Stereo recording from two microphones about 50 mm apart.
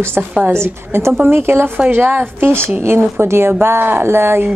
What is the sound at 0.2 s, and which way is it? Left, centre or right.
Speech, right.